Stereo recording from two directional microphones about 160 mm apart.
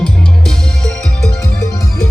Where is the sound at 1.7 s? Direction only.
20° left (ahead or behind).